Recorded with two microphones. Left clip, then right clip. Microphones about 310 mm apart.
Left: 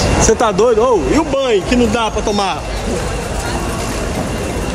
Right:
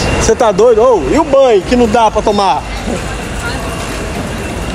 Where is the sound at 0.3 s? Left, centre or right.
Centre.